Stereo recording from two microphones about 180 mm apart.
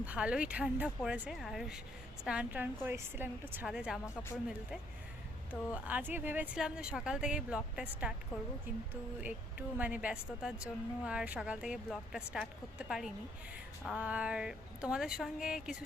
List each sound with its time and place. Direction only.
0.0 s a woman's voice: 5° right (ahead or behind)
4.0 s speech: 15° left (ahead or behind)
5.5 s a woman's voice: 10° right (ahead or behind)
9.2 s a woman's voice: 10° right (ahead or behind)
13.8 s a woman's voice: 5° right (ahead or behind)